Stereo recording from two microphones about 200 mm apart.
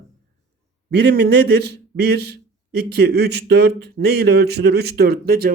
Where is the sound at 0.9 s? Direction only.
55° right (ahead or behind).